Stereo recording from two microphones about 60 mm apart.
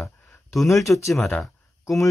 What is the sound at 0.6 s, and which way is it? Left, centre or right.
Speech, left.